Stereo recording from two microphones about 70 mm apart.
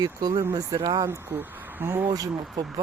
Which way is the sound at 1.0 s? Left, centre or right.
Right.